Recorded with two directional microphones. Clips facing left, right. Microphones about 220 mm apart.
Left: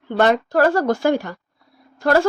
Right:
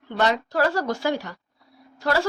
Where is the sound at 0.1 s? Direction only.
50° left (ahead or behind).